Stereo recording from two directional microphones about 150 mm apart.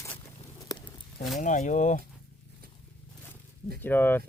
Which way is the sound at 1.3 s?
55° left (ahead or behind).